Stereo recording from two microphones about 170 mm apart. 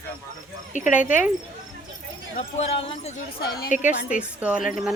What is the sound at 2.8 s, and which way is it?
Speech, 35° left (ahead or behind).